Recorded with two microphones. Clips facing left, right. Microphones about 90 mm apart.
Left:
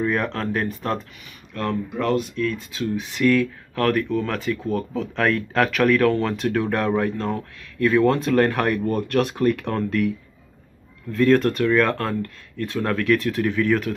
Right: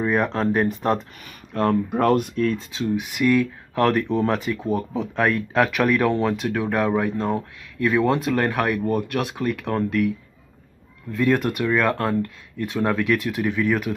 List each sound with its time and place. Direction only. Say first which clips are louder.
0.0 s speech: right 2 dB; 20° right (ahead or behind)
1.5 s speech: right 5 dB; 35° right (ahead or behind)
1.9 s speech: right 3 dB; 50° right (ahead or behind)
2.7 s speech: right 1 dB; 15° right (ahead or behind)
6.3 s speech: left 1 dB; 5° right (ahead or behind)